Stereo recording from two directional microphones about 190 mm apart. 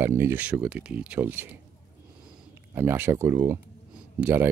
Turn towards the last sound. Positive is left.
turn(degrees=-10)  # may be behind; listen again after turning